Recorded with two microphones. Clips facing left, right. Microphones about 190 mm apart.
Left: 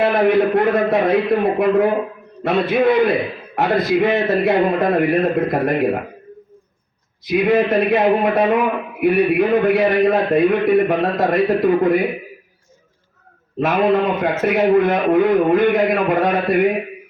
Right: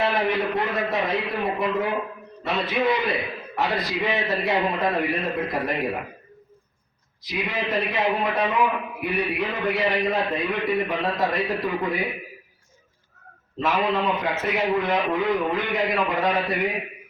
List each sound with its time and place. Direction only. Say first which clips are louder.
0.0 s a man's voice: left 9 dB; 55° left (ahead or behind)
7.3 s a man's voice: left 12 dB; 55° left (ahead or behind)
13.6 s a man's voice: left 7 dB; 55° left (ahead or behind)